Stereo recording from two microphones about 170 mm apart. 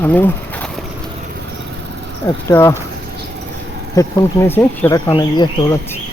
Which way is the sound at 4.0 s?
15° left (ahead or behind).